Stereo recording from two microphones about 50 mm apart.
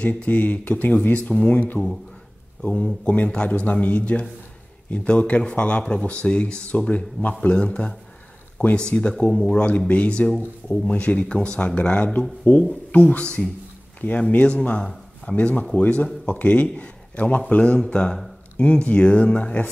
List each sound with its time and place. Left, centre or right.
0.0 s speech: left
2.8 s speech: left
9.3 s speech: centre
9.7 s speech: left